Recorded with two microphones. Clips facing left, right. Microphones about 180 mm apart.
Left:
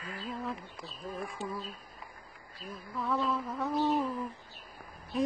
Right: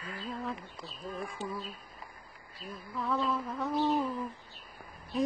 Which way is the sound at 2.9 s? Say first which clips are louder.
Even; centre (ahead or behind).